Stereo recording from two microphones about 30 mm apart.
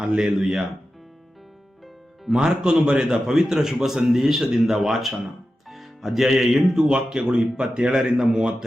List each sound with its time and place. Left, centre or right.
0.3 s speech: centre
2.3 s speech: right
2.7 s speech: right
3.3 s speech: centre
6.8 s speech: right